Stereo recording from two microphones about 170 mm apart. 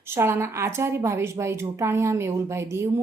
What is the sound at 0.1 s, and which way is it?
A woman's voice, 15° right (ahead or behind).